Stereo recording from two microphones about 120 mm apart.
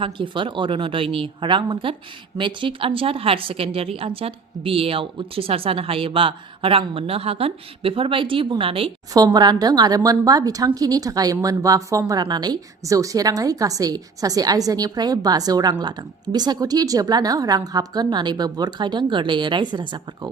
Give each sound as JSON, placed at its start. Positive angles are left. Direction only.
{"t": 0.0, "sound": "speech", "side_deg": -45}
{"t": 9.1, "sound": "a woman's voice", "side_deg": -35}